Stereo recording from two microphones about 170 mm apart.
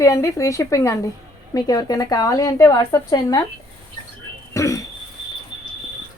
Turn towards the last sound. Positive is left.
turn(degrees=20)  # may be behind; listen again after turning